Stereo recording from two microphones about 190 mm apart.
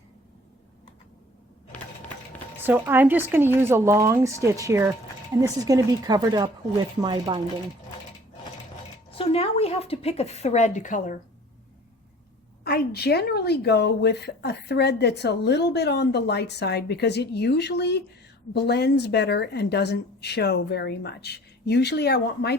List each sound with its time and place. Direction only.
2.6 s speech: 10° right (ahead or behind)
9.1 s a woman's voice: 30° left (ahead or behind)
12.6 s speech: 55° left (ahead or behind)